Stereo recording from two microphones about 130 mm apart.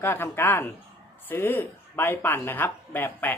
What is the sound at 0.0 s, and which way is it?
Speech, 15° left (ahead or behind).